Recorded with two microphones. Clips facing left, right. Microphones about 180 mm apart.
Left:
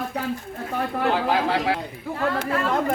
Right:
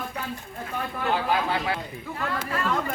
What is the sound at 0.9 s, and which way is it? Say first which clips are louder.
Speech: left 3 dB; 70° left (ahead or behind).